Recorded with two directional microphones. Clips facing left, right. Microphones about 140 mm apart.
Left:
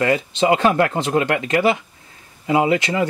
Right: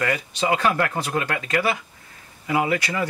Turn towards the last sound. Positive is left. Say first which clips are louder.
# left 5 dB
turn(degrees=25)  # may be behind; listen again after turning